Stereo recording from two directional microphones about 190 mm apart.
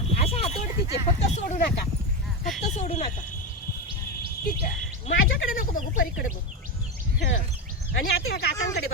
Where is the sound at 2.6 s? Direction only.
35° left (ahead or behind).